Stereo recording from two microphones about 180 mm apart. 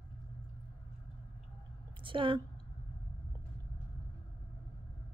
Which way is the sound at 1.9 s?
30° right (ahead or behind).